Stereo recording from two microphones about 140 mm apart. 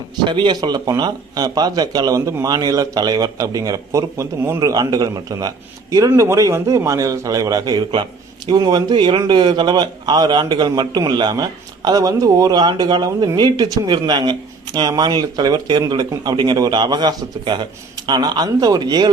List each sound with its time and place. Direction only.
0.3 s a man's voice: 35° right (ahead or behind)